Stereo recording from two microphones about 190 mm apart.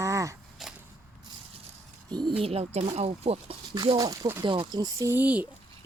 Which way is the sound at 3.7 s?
20° right (ahead or behind).